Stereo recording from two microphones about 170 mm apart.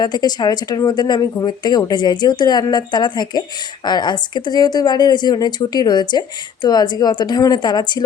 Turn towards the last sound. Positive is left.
turn(degrees=25)  # may be behind; listen again after turning